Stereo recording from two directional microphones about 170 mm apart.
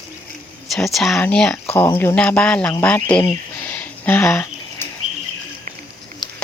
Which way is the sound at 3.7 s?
10° left (ahead or behind).